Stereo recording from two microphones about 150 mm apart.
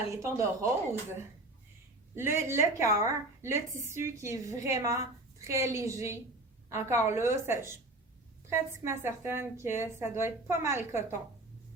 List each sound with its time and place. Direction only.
0.1 s a woman's voice: 20° right (ahead or behind)
2.1 s a woman's voice: 15° right (ahead or behind)